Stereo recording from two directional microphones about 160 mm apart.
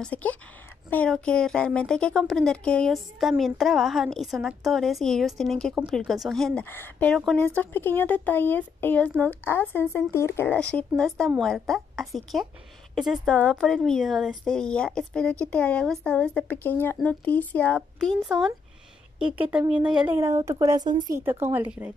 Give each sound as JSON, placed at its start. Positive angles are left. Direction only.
{"t": 0.0, "sound": "a woman's voice", "side_deg": 10}
{"t": 6.6, "sound": "a woman's voice", "side_deg": 15}
{"t": 21.2, "sound": "speech", "side_deg": -15}